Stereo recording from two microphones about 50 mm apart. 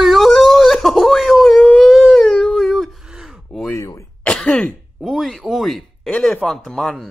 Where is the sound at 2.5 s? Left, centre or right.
Centre.